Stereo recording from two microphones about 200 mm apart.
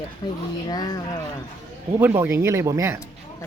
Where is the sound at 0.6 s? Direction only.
20° left (ahead or behind).